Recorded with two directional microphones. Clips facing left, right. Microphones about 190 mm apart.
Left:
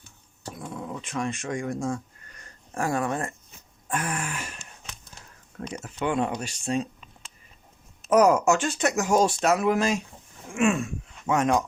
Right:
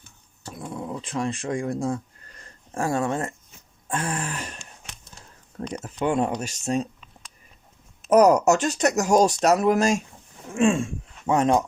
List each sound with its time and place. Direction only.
1.0 s speech: 30° right (ahead or behind)
6.1 s speech: 40° right (ahead or behind)
8.1 s speech: 40° right (ahead or behind)
10.5 s speech: 30° right (ahead or behind)